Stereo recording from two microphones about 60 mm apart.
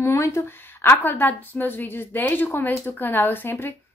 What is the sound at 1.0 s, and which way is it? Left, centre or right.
A woman's voice, left.